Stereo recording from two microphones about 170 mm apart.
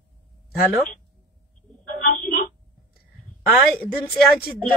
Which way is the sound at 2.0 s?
55° left (ahead or behind).